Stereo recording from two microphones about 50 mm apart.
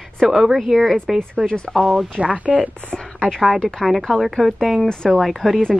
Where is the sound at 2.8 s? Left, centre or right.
Left.